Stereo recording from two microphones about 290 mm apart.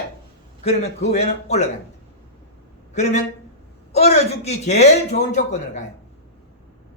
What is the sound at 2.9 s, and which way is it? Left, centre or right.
A man's voice, left.